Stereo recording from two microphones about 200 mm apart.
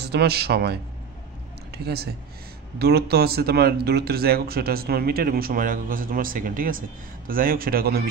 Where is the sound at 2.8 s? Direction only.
50° right (ahead or behind).